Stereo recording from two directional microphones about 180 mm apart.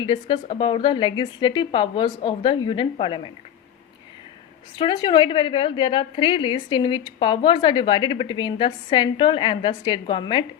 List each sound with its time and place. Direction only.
0.0 s a woman's voice: 25° left (ahead or behind)
4.8 s a woman's voice: 25° left (ahead or behind)